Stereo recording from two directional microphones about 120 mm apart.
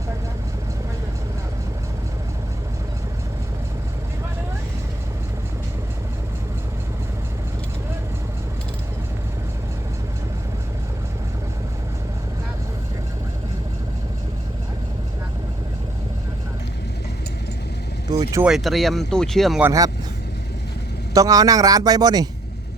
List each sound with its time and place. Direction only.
18.1 s vehicle: 30° right (ahead or behind)
18.4 s speech: centre (ahead or behind)
21.1 s speech: 30° right (ahead or behind)